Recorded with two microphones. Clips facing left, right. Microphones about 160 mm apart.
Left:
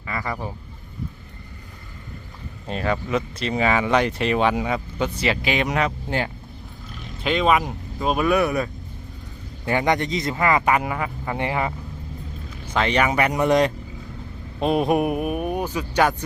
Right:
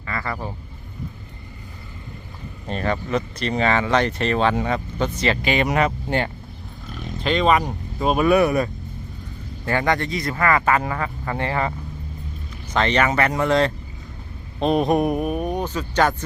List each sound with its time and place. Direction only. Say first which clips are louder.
0.0 s vehicle: even; 15° left (ahead or behind)
2.6 s speech: even; 5° left (ahead or behind)
9.6 s speech: even; 15° left (ahead or behind)
12.7 s speech: right 1 dB; 10° left (ahead or behind)